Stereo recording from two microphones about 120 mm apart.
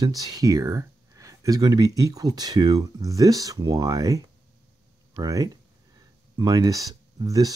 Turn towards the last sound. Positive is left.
turn(degrees=-30)  # may be behind; listen again after turning